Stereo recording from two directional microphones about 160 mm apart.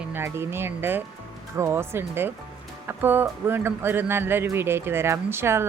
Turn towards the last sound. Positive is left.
turn(degrees=-15)  # may be behind; listen again after turning